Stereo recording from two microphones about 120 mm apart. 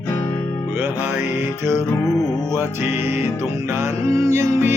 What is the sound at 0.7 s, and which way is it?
Music, 20° right (ahead or behind).